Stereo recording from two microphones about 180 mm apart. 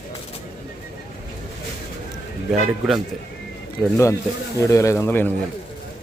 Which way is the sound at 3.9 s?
15° left (ahead or behind).